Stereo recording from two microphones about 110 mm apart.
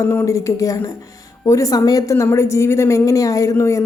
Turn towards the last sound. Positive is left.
turn(degrees=25)  # may be behind; listen again after turning